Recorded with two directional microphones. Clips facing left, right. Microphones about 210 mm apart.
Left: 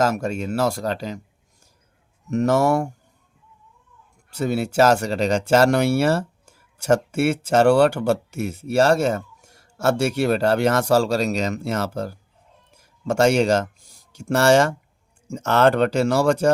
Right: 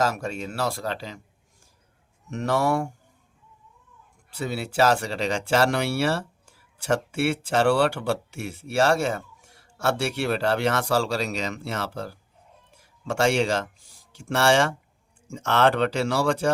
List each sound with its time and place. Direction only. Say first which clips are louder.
0.0 s speech: left 5 dB; 45° left (ahead or behind)
2.3 s speech: left 5 dB; 45° left (ahead or behind)
4.3 s speech: left 7 dB; 45° left (ahead or behind)